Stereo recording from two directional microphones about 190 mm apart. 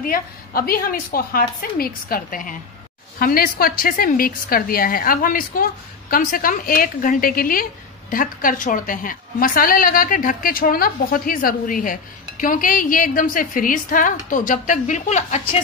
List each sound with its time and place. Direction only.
0.0 s a woman's voice: 50° left (ahead or behind)